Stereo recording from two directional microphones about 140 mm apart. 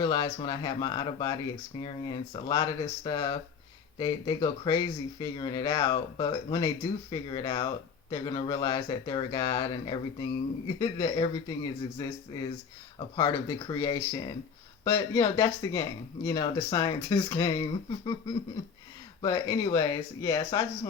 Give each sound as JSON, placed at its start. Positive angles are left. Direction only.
{"t": 0.0, "sound": "speech", "side_deg": 30}